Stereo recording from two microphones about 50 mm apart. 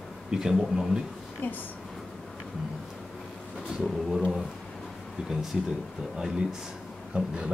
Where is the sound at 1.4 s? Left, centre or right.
Left.